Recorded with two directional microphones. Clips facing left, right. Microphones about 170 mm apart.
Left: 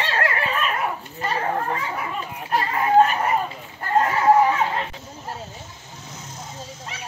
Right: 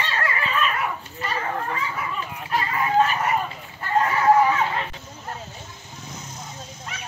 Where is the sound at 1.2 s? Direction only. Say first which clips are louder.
Left 3 dB; 35° left (ahead or behind).